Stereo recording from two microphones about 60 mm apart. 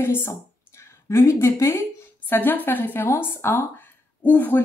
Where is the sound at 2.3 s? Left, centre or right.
Left.